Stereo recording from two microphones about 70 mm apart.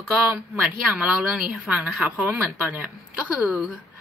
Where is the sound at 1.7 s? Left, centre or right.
Centre.